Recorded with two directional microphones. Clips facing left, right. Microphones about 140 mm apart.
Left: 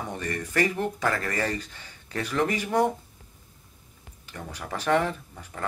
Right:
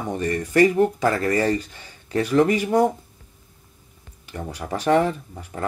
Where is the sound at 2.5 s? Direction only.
10° right (ahead or behind).